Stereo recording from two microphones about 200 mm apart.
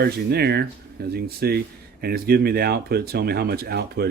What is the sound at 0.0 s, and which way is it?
Speech, 50° right (ahead or behind).